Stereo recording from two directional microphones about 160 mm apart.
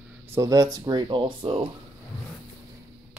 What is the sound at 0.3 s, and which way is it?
Speech, 20° right (ahead or behind).